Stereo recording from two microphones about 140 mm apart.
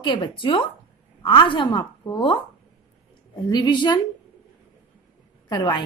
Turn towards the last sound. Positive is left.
turn(degrees=30)  # may be behind; listen again after turning